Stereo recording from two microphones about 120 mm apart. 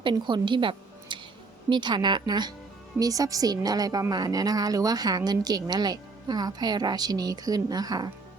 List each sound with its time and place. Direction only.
0.0 s a woman's voice: 40° right (ahead or behind)